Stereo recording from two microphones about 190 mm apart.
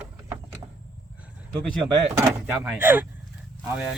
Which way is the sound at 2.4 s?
5° right (ahead or behind).